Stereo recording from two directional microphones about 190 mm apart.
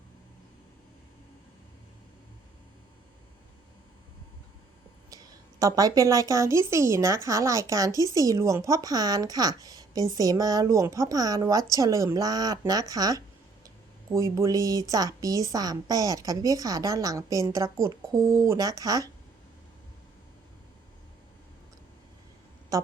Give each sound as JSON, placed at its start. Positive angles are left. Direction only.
{"t": 5.1, "sound": "a woman's voice", "side_deg": -15}
{"t": 22.7, "sound": "speech", "side_deg": -20}